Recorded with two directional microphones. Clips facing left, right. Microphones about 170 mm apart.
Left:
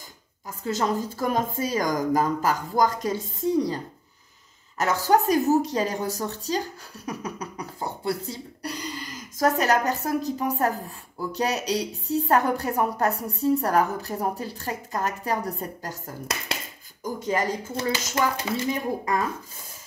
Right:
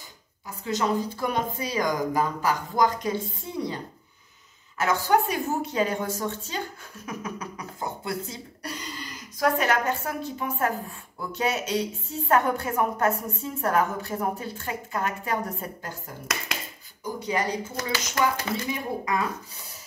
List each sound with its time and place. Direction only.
0.7 s a woman's voice: 40° left (ahead or behind)
7.1 s beatboxing: 35° left (ahead or behind)
9.4 s a woman's voice: 40° left (ahead or behind)
17.7 s speech: 25° left (ahead or behind)
18.7 s speech: 45° left (ahead or behind)